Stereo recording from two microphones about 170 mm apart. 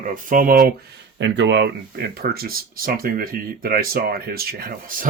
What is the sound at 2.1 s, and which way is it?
Speech, 60° right (ahead or behind).